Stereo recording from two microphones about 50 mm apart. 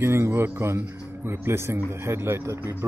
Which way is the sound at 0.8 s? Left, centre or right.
Right.